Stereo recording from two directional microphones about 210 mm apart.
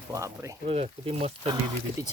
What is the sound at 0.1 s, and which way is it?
Speech, 15° right (ahead or behind).